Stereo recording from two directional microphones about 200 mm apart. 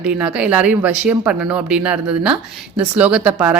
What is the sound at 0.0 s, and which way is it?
A woman's voice, 5° right (ahead or behind).